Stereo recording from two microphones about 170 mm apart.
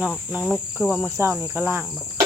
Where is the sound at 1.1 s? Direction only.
15° right (ahead or behind).